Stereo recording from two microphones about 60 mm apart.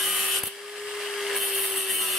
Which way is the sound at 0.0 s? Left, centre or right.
Centre.